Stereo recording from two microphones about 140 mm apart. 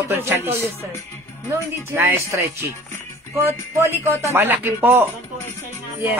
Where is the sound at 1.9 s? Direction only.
20° right (ahead or behind).